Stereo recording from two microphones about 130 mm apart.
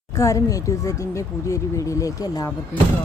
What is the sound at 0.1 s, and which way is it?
A woman's voice, 25° left (ahead or behind).